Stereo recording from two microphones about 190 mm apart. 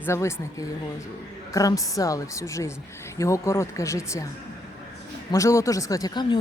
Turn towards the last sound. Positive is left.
turn(degrees=25)  # may be behind; listen again after turning